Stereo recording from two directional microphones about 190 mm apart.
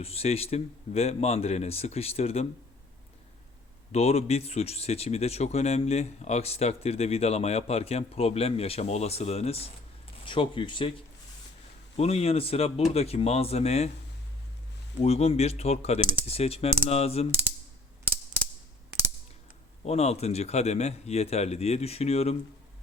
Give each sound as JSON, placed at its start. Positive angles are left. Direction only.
{"t": 0.0, "sound": "speech", "side_deg": 30}
{"t": 3.9, "sound": "speech", "side_deg": 35}
{"t": 11.9, "sound": "speech", "side_deg": 35}
{"t": 15.0, "sound": "speech", "side_deg": 35}
{"t": 19.8, "sound": "speech", "side_deg": 35}